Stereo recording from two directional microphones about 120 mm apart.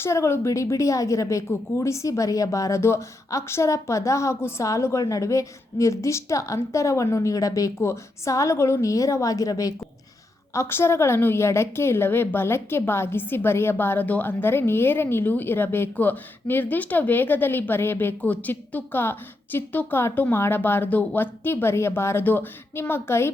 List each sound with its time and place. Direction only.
0.0 s a woman's voice: 20° left (ahead or behind)